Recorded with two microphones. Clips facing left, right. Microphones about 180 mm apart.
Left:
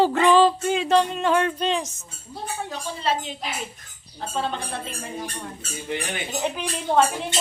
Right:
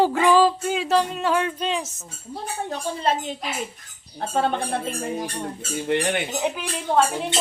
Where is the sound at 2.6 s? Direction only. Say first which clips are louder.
Right 3 dB; 50° right (ahead or behind).